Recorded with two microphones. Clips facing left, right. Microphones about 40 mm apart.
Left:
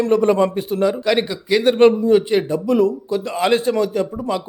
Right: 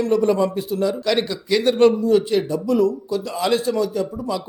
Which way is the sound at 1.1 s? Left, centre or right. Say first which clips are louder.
Left 2 dB; left.